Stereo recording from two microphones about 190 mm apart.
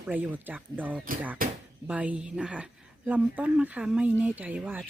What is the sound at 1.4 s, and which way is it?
Speech, 50° right (ahead or behind).